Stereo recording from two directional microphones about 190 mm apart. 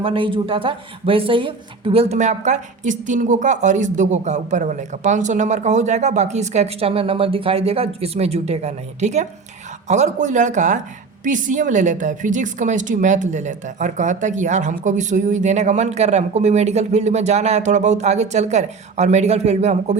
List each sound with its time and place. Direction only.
0.0 s speech: 30° right (ahead or behind)